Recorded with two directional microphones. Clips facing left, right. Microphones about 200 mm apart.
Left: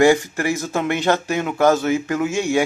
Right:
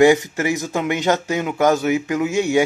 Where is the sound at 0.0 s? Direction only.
20° right (ahead or behind).